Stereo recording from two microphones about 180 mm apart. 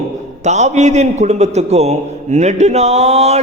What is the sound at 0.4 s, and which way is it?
A man's voice, 40° right (ahead or behind).